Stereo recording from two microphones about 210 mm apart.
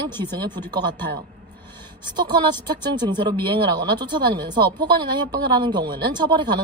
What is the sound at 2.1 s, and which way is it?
Speech, 20° right (ahead or behind).